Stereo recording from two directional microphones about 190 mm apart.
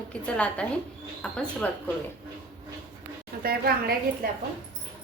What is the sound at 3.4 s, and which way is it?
Speech, 55° right (ahead or behind).